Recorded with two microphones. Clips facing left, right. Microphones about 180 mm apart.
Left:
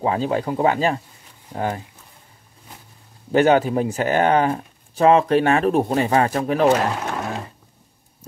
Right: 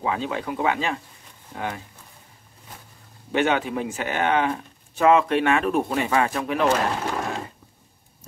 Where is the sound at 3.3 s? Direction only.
40° left (ahead or behind).